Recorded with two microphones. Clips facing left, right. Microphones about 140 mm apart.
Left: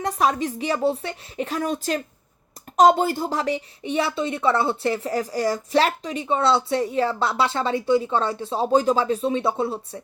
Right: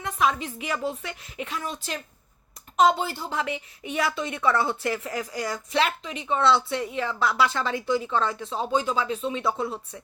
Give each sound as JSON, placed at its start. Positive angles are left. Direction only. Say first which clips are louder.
{"t": 0.0, "sound": "a woman's voice", "louder": "left 4 dB", "side_deg": 40}